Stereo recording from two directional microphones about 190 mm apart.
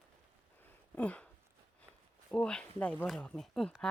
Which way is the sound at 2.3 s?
5° left (ahead or behind).